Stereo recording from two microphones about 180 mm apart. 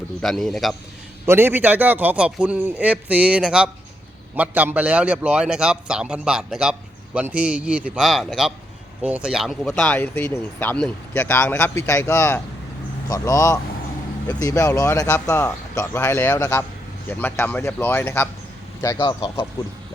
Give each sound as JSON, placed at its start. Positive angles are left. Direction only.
{"t": 0.2, "sound": "a man's voice", "side_deg": 0}
{"t": 1.3, "sound": "a man's voice", "side_deg": -10}
{"t": 18.9, "sound": "speech", "side_deg": 25}